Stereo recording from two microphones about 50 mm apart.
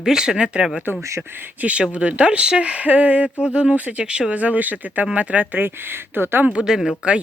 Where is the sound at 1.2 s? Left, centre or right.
Right.